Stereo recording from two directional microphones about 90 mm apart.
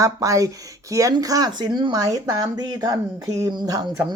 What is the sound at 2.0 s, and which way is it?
Speech, 40° right (ahead or behind).